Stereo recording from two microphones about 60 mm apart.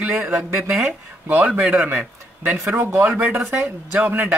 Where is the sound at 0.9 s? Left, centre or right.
Right.